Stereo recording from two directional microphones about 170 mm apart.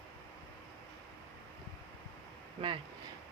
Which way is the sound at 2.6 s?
30° right (ahead or behind).